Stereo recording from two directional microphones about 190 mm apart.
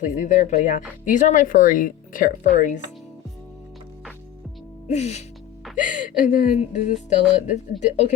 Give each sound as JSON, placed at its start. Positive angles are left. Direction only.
{"t": 0.0, "sound": "speech", "side_deg": 45}
{"t": 4.9, "sound": "speech", "side_deg": 35}